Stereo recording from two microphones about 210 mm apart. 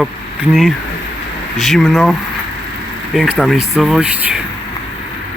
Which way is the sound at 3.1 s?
Centre (ahead or behind).